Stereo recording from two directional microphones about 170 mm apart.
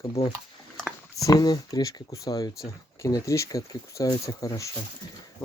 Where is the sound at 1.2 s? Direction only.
20° left (ahead or behind).